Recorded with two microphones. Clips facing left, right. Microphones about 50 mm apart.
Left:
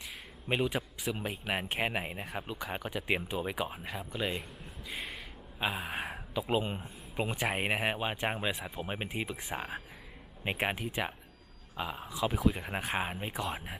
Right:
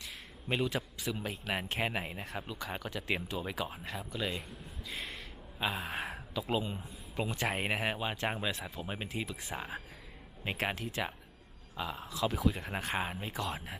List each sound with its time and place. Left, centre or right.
0.4 s speech: centre
4.9 s gasp: centre
6.6 s speech: left
7.2 s speech: left